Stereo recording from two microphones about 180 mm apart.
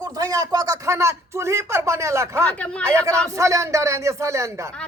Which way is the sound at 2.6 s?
5° left (ahead or behind).